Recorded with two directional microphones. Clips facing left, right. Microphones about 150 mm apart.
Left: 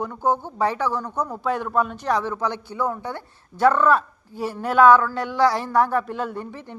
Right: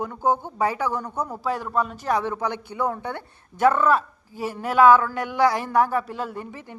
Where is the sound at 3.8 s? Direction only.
10° right (ahead or behind).